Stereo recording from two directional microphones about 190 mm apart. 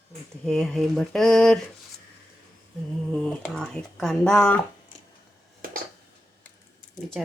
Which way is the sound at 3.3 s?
5° left (ahead or behind).